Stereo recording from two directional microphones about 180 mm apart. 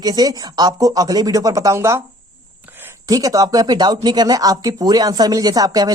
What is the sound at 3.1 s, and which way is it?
Speech, 20° right (ahead or behind).